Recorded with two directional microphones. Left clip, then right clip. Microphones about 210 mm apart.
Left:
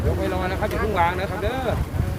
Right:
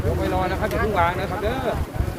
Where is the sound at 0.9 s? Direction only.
50° left (ahead or behind).